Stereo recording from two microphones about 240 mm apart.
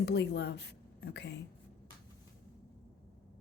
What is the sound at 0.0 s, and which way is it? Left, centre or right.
A woman's voice, left.